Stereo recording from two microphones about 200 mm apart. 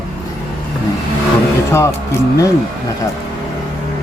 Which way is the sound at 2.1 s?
15° left (ahead or behind).